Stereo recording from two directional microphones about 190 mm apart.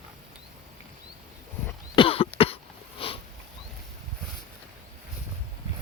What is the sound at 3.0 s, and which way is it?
Sniff, 30° left (ahead or behind).